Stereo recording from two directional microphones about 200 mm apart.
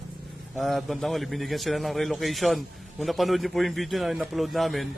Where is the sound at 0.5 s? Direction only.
Centre (ahead or behind).